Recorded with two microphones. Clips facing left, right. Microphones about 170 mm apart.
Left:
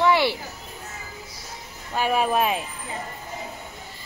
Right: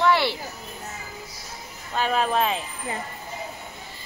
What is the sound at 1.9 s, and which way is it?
Speech, 10° left (ahead or behind).